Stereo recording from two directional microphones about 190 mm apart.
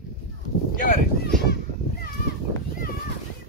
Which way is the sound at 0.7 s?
45° left (ahead or behind).